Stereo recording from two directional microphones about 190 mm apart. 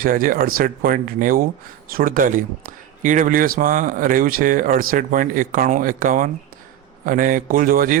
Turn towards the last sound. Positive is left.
turn(degrees=-45)  # may be behind; listen again after turning